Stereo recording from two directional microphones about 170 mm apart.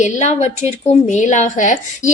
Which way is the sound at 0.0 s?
40° left (ahead or behind).